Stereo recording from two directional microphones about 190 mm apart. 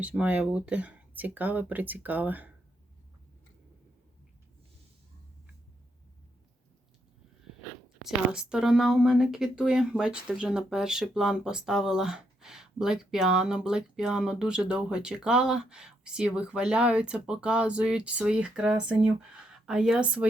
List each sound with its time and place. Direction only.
0.0 s speech: 5° right (ahead or behind)
8.0 s speech: 5° right (ahead or behind)